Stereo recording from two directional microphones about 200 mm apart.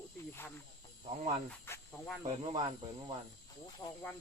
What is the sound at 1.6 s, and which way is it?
Speech, 10° left (ahead or behind).